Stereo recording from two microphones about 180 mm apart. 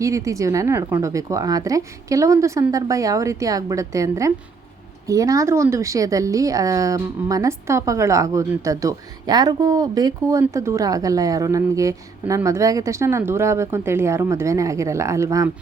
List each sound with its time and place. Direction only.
0.0 s a woman's voice: 15° right (ahead or behind)